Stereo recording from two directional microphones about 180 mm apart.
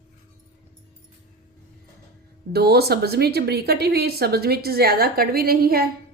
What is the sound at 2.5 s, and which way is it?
A woman's voice, 60° right (ahead or behind).